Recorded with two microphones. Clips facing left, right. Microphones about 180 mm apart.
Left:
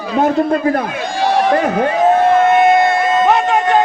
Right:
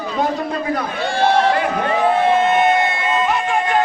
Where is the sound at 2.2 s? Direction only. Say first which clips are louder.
Left 4 dB; 45° left (ahead or behind).